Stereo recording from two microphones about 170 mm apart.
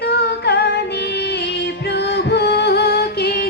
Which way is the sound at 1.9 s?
80° left.